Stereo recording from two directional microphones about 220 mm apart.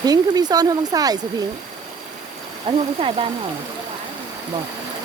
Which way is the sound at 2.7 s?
20° right (ahead or behind).